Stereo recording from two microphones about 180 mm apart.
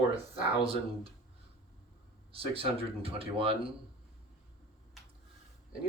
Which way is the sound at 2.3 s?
30° right (ahead or behind).